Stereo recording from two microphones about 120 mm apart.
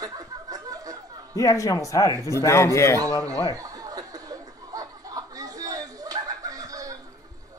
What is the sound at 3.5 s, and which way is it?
Chuckle, 30° right (ahead or behind).